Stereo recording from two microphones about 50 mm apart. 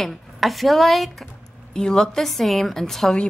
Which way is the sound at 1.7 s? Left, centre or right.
Centre.